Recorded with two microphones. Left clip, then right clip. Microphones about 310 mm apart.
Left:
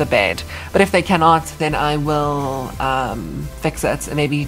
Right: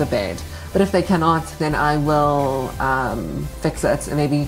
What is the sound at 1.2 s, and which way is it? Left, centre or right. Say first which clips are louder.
Speech: left 5 dB; left.